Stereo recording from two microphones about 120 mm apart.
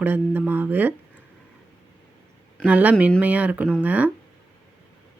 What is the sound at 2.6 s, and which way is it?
Speech, 10° right (ahead or behind).